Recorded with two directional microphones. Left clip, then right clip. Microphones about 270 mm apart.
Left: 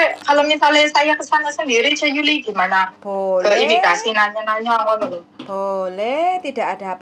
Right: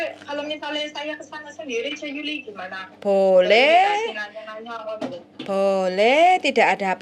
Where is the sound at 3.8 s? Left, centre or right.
Left.